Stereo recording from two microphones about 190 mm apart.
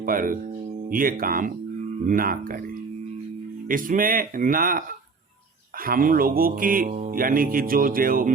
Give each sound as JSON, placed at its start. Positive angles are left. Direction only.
{"t": 0.0, "sound": "speech", "side_deg": -45}
{"t": 3.7, "sound": "speech", "side_deg": -45}
{"t": 5.8, "sound": "speech", "side_deg": -50}